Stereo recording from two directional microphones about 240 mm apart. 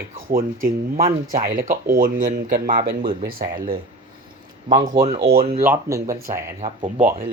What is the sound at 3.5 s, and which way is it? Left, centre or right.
Speech, right.